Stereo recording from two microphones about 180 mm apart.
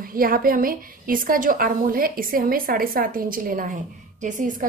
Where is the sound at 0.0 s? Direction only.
55° right (ahead or behind).